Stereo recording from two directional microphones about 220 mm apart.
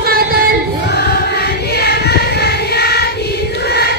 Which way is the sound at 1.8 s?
45° left (ahead or behind).